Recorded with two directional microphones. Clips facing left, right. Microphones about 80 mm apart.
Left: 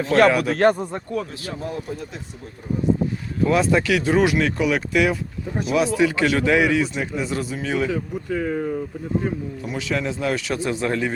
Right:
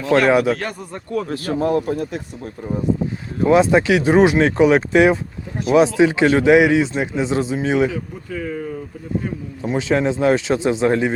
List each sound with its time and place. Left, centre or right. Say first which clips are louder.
0.3 s speech: right 4 dB; right
0.6 s speech: left 11 dB; left
1.3 s speech: right 11 dB; right
3.4 s speech: right 5 dB; right
8.4 s speech: left 1 dB; left
9.6 s speech: right 8 dB; right